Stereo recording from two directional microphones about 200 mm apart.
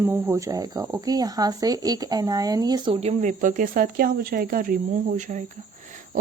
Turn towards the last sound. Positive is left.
turn(degrees=-40)  # may be behind; listen again after turning